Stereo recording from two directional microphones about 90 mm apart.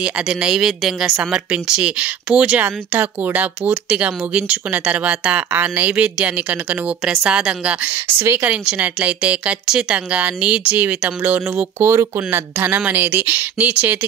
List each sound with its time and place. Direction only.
0.0 s speech: 10° right (ahead or behind)
8.2 s speech: 25° right (ahead or behind)
8.5 s speech: 15° right (ahead or behind)